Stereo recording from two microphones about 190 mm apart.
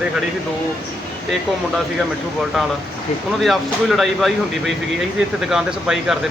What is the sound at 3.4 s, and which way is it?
Speech, centre (ahead or behind).